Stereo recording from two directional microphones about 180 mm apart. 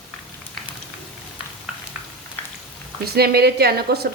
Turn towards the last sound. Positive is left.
turn(degrees=-60)  # may be behind; listen again after turning